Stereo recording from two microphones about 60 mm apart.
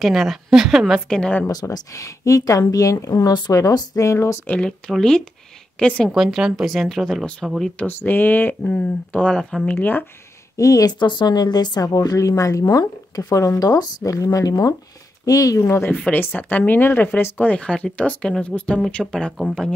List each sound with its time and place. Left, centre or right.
0.0 s a woman's voice: centre
1.0 s speech: centre
1.5 s speech: left
4.5 s a woman's voice: centre
6.0 s a woman's voice: centre
7.8 s speech: left
8.6 s speech: left
9.3 s a woman's voice: centre
9.7 s speech: left
10.6 s speech: left
16.1 s speech: left
19.0 s speech: centre